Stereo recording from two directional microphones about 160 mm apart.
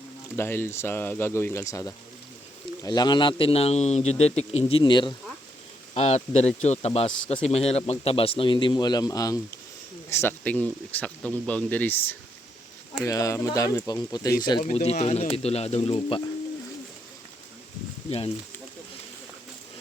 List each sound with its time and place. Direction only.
0.3 s speech: 15° left (ahead or behind); by 4.8 s 40° left (ahead or behind)
4.8 s speech: 30° left (ahead or behind)
5.9 s speech: 45° left (ahead or behind); by 14.3 s 20° left (ahead or behind)
14.6 s speech: 40° left (ahead or behind)